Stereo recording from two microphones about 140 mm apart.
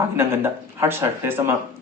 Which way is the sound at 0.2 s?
15° right (ahead or behind).